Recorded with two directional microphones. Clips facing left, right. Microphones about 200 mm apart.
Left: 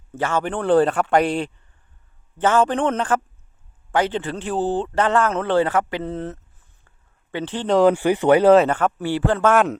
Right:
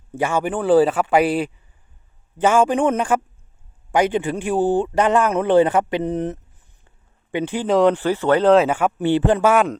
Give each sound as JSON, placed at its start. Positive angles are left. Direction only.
{"t": 0.1, "sound": "a man's voice", "side_deg": -10}
{"t": 9.0, "sound": "speech", "side_deg": -20}
{"t": 9.5, "sound": "speech", "side_deg": 0}